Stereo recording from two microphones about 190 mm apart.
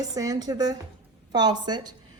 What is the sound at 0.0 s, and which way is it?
Speech, 20° right (ahead or behind).